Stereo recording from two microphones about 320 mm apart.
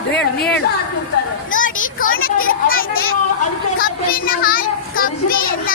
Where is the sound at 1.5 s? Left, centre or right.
Left.